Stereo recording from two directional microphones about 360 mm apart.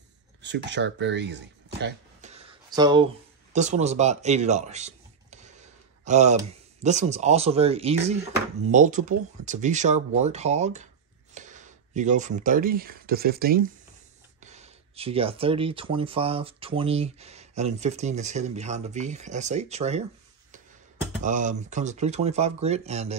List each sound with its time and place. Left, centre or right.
0.4 s speech: right
2.3 s a sound: centre
6.8 s speech: centre
21.2 s speech: right